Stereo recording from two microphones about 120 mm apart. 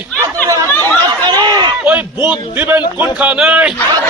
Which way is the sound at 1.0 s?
35° right (ahead or behind).